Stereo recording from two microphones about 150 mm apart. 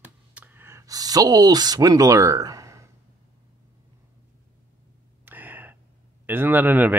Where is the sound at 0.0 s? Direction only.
10° right (ahead or behind).